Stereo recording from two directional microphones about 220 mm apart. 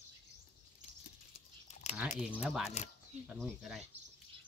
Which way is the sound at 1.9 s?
30° left (ahead or behind).